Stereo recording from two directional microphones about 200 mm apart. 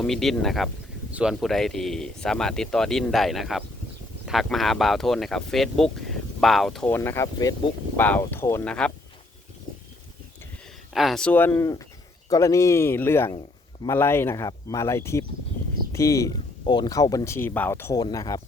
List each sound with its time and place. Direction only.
0.0 s speech: centre (ahead or behind)
10.9 s speech: centre (ahead or behind); by 18.3 s 15° left (ahead or behind)